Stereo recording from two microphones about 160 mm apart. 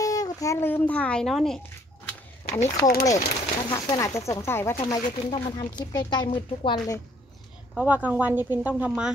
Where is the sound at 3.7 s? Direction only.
20° left (ahead or behind).